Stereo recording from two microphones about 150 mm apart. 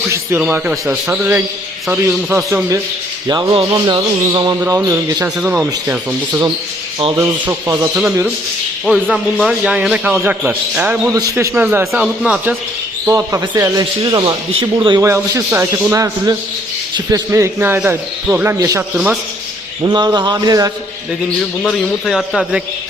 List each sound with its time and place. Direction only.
0.1 s a man's voice: 15° right (ahead or behind)
8.9 s a man's voice: centre (ahead or behind)
11.1 s a man's voice: 20° right (ahead or behind)
15.0 s a man's voice: 20° right (ahead or behind)
19.8 s a man's voice: 30° right (ahead or behind)
21.6 s a man's voice: 5° left (ahead or behind)